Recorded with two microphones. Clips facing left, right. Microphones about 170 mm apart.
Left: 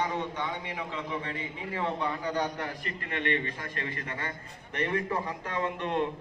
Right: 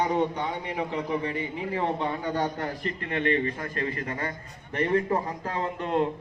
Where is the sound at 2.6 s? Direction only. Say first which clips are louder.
Right 5 dB; 35° right (ahead or behind).